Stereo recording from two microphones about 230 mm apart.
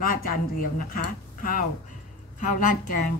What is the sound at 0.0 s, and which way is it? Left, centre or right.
Speech, left.